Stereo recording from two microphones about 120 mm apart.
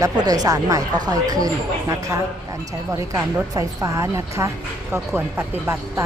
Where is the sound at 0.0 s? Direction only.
30° right (ahead or behind).